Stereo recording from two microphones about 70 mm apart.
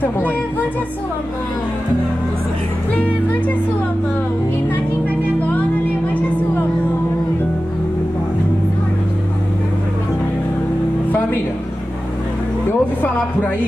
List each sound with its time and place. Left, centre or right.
0.0 s music: left
2.9 s speech: left
11.1 s music: left
12.6 s music: left